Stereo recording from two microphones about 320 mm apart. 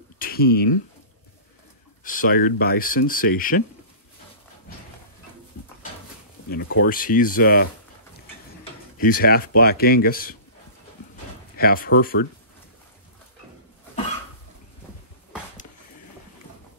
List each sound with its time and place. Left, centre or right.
0.2 s a sound: left
2.0 s speech: left
6.5 s speech: left
8.9 s speech: left
11.5 s speech: left